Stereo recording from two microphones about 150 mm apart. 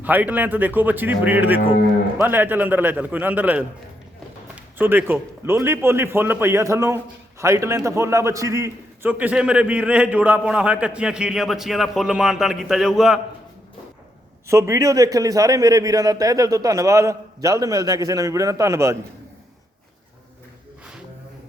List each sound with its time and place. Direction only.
0.0 s a man's voice: 10° right (ahead or behind)
9.0 s a man's voice: 10° right (ahead or behind)
14.4 s a man's voice: 20° right (ahead or behind)